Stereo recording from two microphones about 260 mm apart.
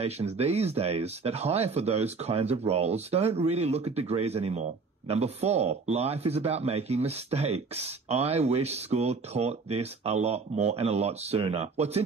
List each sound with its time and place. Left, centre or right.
0.0 s speech: right